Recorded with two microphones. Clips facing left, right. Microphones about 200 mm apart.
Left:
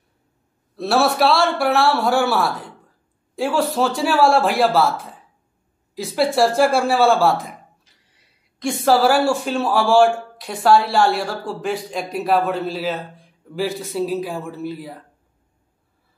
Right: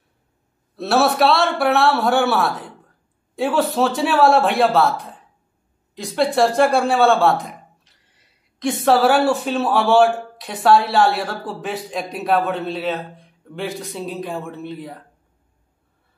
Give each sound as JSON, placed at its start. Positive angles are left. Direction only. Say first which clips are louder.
{"t": 0.7, "sound": "speech", "louder": "right 1 dB", "side_deg": 0}